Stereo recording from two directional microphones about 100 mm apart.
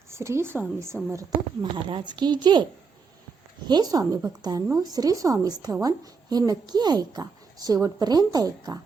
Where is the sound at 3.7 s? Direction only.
40° right (ahead or behind).